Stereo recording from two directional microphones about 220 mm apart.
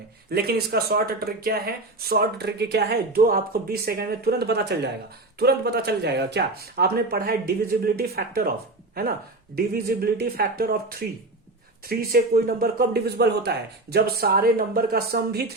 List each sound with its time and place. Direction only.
0.3 s speech: 45° right (ahead or behind)
9.6 s speech: 45° right (ahead or behind)